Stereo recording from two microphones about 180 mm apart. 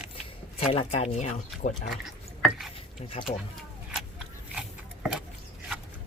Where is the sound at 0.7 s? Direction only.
30° left (ahead or behind).